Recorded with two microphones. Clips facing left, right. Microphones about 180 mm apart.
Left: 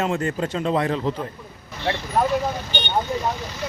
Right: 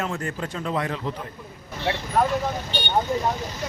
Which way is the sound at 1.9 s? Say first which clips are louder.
Left 1 dB; 5° right (ahead or behind).